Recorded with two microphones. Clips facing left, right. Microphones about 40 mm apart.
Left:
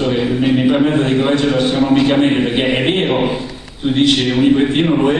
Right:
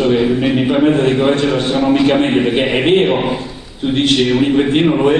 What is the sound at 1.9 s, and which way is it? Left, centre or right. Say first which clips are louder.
Speech: even; centre.